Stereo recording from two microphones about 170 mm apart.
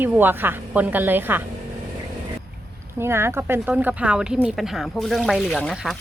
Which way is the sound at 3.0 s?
15° right (ahead or behind).